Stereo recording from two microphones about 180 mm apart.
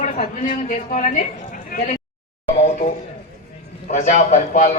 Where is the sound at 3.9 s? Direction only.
45° left (ahead or behind).